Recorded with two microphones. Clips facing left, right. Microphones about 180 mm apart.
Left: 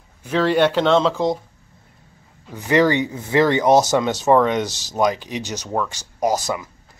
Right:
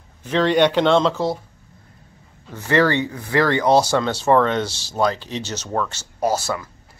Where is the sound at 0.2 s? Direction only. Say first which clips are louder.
Even; 5° left (ahead or behind).